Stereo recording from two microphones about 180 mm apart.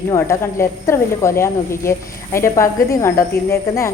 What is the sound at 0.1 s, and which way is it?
Speech, 15° left (ahead or behind).